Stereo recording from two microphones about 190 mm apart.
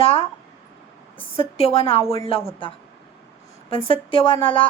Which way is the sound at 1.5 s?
30° left (ahead or behind).